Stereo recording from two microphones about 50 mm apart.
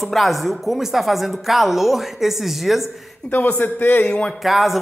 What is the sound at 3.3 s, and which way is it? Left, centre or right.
Speech, left.